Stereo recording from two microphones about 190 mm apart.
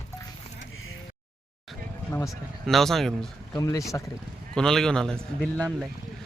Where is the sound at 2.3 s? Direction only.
Centre (ahead or behind).